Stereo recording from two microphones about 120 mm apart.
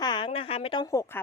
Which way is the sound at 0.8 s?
25° left (ahead or behind).